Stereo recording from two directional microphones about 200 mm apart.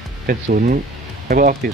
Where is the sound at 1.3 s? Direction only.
45° right (ahead or behind).